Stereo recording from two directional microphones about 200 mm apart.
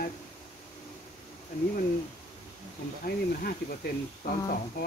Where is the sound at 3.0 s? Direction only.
45° left (ahead or behind).